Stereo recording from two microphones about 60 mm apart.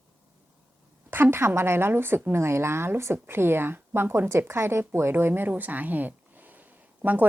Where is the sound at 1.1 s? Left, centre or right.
Right.